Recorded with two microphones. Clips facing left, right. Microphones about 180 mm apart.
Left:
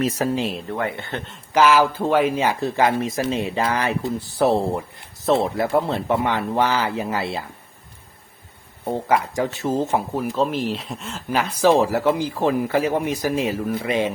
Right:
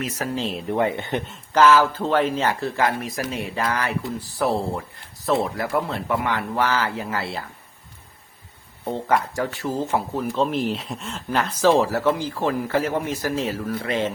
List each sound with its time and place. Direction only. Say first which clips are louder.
0.7 s speech: right 4 dB; 20° right (ahead or behind)
1.5 s speech: even; 10° left (ahead or behind)
8.9 s speech: left 2 dB; 10° left (ahead or behind)
10.3 s speech: even; centre (ahead or behind)